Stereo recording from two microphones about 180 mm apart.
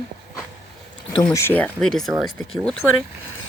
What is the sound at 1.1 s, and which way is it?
Speech, 15° left (ahead or behind).